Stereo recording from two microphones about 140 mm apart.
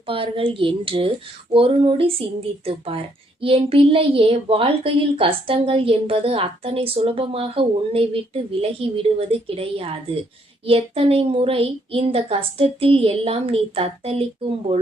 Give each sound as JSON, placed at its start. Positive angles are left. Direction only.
{"t": 0.1, "sound": "a woman's voice", "side_deg": -40}